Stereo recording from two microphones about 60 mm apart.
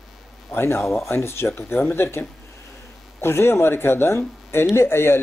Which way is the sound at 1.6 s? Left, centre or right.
Left.